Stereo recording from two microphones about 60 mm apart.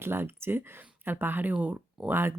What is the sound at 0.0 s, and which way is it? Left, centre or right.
Speech, right.